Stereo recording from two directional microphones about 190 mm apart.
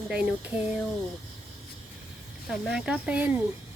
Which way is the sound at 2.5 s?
Centre (ahead or behind).